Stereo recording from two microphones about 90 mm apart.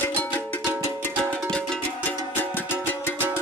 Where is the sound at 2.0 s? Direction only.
20° left (ahead or behind).